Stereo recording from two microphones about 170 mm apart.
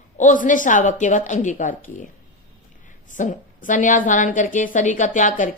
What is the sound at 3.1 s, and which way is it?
A woman's voice, 50° left (ahead or behind).